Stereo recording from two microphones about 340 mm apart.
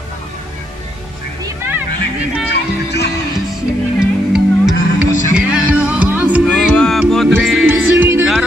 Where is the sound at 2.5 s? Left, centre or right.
Left.